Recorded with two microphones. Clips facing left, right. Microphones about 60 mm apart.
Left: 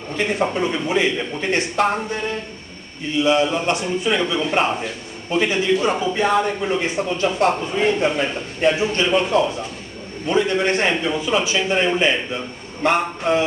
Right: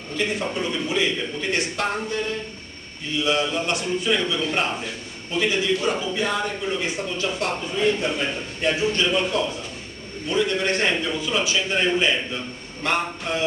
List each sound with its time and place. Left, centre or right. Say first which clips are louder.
0.1 s a man's voice: left 5 dB; left
3.3 s a man's voice: left 5 dB; left